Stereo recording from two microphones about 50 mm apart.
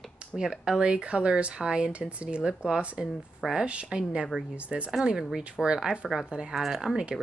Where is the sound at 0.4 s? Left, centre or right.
Centre.